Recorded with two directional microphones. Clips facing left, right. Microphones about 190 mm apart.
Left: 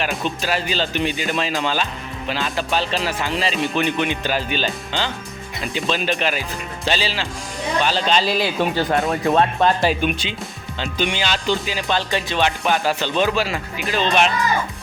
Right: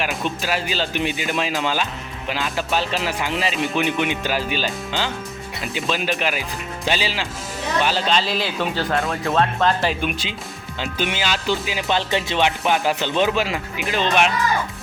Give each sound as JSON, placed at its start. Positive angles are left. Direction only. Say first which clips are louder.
{"t": 0.0, "sound": "speech", "louder": "left 1 dB", "side_deg": -5}
{"t": 8.1, "sound": "speech", "louder": "left 3 dB", "side_deg": 15}
{"t": 10.0, "sound": "speech", "louder": "left 3 dB", "side_deg": 0}
{"t": 11.8, "sound": "speech", "louder": "right 1 dB", "side_deg": -20}